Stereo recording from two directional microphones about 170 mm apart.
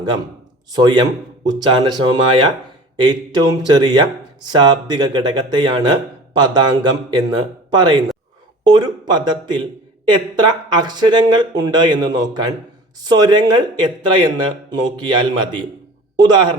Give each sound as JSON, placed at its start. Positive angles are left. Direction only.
{"t": 0.7, "sound": "a man's voice", "side_deg": -25}
{"t": 16.2, "sound": "a man's voice", "side_deg": -25}